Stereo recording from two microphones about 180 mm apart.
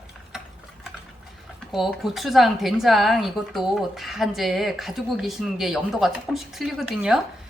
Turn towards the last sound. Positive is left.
turn(degrees=0)  # may be behind; listen again after turning